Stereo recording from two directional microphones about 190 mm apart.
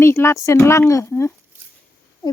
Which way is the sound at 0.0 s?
15° left (ahead or behind).